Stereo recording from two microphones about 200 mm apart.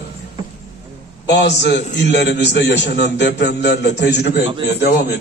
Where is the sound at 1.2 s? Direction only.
60° left (ahead or behind).